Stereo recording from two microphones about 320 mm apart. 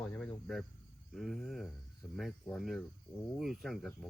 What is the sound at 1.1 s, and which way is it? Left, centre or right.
Speech, centre.